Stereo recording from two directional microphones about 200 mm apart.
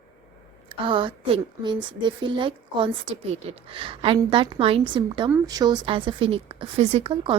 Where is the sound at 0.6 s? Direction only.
25° right (ahead or behind).